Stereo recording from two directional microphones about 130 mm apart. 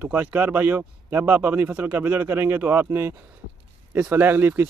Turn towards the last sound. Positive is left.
turn(degrees=-15)  # may be behind; listen again after turning